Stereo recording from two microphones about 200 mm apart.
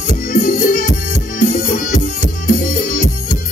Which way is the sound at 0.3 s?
40° left (ahead or behind).